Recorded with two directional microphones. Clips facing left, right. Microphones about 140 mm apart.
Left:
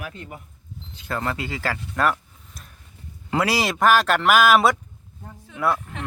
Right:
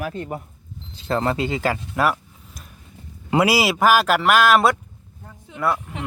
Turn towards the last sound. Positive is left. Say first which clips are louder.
# right 2 dB
turn(degrees=-15)  # may be behind; listen again after turning